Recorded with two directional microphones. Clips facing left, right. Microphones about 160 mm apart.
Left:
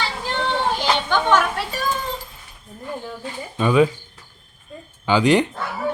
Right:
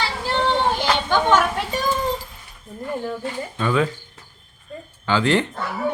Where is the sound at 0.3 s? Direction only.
10° right (ahead or behind).